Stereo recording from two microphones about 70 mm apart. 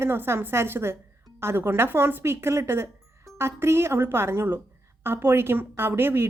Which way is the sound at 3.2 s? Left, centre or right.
Right.